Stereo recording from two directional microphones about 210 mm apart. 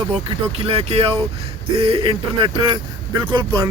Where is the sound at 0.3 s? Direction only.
25° right (ahead or behind).